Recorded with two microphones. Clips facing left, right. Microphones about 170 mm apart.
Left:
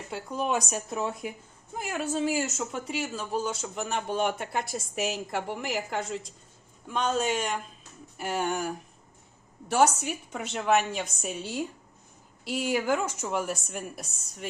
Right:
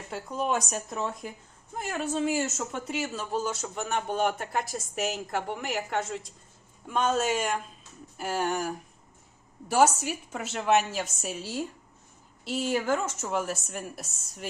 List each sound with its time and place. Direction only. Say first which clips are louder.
0.1 s a woman's voice: even; centre (ahead or behind)